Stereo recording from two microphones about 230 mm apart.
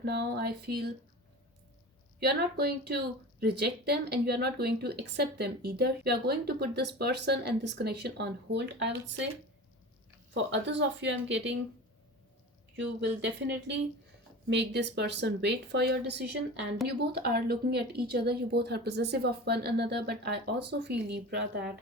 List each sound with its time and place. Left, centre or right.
0.0 s a woman's voice: right
2.2 s a woman's voice: right
10.3 s a woman's voice: right
12.7 s a woman's voice: right